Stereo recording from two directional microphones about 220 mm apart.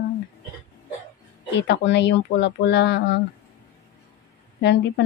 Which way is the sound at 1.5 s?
50° left (ahead or behind).